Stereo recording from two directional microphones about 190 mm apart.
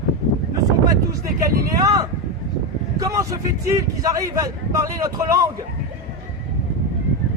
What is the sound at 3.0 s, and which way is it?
A man's voice, 15° right (ahead or behind).